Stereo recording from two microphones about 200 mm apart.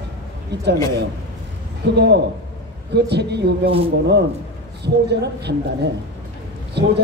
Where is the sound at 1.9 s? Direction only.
55° right (ahead or behind).